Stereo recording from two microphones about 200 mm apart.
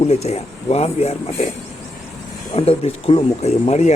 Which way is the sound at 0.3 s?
30° left (ahead or behind).